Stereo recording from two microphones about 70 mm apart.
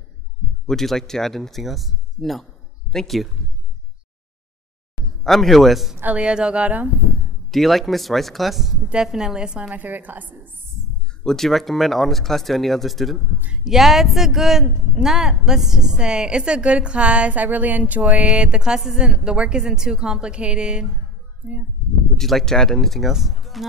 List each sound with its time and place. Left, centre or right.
0.7 s speech: centre
5.2 s speech: centre
6.1 s a woman's voice: centre
7.5 s a woman's voice: centre; by 10.5 s right
11.2 s a woman's voice: centre; by 18.2 s right
18.2 s a woman's voice: centre
22.1 s speech: centre